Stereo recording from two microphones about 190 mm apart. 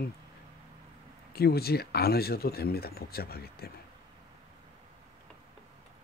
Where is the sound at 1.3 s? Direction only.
55° left (ahead or behind).